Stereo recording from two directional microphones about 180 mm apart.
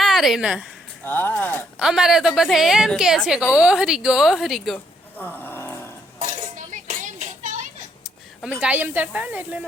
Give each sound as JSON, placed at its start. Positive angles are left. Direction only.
{"t": 0.0, "sound": "a woman's voice", "side_deg": 0}
{"t": 1.0, "sound": "speech", "side_deg": 10}
{"t": 1.8, "sound": "a woman's voice", "side_deg": -5}
{"t": 5.1, "sound": "a sound", "side_deg": 10}
{"t": 6.7, "sound": "a sound", "side_deg": -45}
{"t": 8.4, "sound": "speech", "side_deg": 0}